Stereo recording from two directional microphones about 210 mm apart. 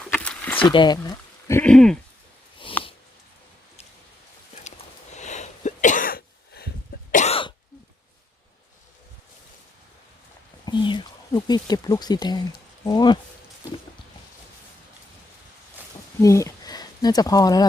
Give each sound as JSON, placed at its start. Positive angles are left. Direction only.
{"t": 0.0, "sound": "zipper", "side_deg": 5}
{"t": 0.6, "sound": "speech", "side_deg": 20}
{"t": 5.1, "sound": "cough", "side_deg": 35}
{"t": 10.7, "sound": "a sound", "side_deg": 20}
{"t": 12.8, "sound": "speech", "side_deg": 20}
{"t": 16.2, "sound": "speech", "side_deg": 15}